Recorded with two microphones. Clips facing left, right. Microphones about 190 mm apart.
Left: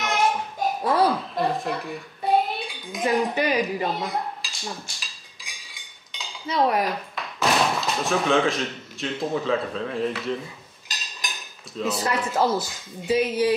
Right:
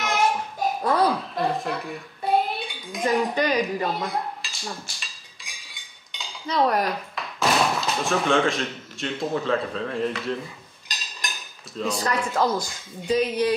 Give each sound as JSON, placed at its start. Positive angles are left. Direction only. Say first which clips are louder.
{"t": 0.0, "sound": "a sound", "louder": "even", "side_deg": 0}
{"t": 10.9, "sound": "cutlery", "louder": "even", "side_deg": 0}
{"t": 12.1, "sound": "a woman's voice", "louder": "left 1 dB", "side_deg": 5}